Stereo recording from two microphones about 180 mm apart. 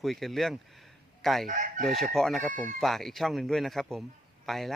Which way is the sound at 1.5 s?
45° right (ahead or behind).